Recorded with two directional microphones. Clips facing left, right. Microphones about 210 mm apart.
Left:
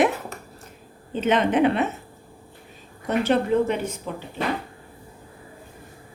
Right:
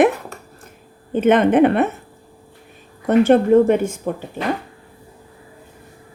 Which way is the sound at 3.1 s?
50° right (ahead or behind).